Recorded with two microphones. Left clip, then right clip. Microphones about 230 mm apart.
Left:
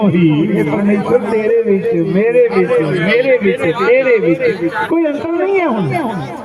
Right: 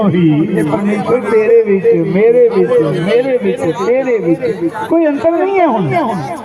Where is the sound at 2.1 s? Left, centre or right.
Right.